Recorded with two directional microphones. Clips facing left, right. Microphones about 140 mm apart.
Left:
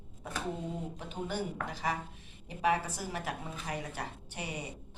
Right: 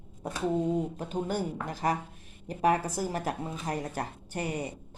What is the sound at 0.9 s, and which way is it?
Speech, 45° right (ahead or behind).